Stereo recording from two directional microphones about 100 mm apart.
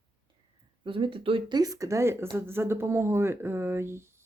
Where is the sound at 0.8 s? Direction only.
60° right (ahead or behind).